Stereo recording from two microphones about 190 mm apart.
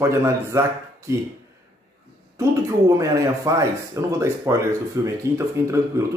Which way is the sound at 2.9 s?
15° right (ahead or behind).